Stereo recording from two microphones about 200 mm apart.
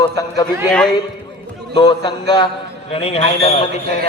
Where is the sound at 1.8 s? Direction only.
25° left (ahead or behind).